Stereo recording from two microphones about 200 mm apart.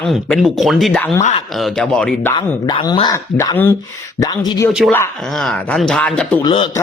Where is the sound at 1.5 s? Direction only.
Centre (ahead or behind).